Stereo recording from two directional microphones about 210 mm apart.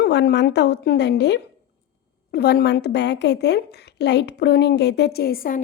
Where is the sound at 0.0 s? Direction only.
55° left (ahead or behind).